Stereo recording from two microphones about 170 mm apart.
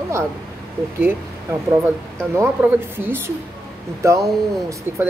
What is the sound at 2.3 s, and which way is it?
Speech, 15° right (ahead or behind).